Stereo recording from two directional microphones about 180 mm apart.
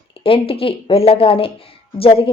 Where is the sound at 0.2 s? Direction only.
30° left (ahead or behind).